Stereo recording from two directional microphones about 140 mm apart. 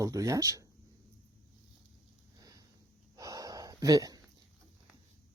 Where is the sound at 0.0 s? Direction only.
25° right (ahead or behind).